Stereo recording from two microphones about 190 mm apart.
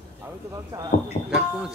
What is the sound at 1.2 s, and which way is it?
Speech, 5° right (ahead or behind).